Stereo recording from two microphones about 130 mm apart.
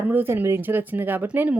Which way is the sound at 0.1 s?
15° right (ahead or behind).